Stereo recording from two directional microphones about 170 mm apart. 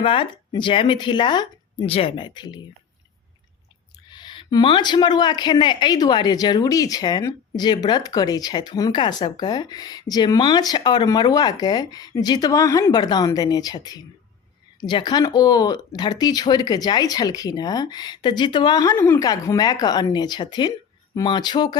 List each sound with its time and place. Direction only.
0.0 s a woman's voice: 30° left (ahead or behind)
4.1 s a woman's voice: 25° left (ahead or behind)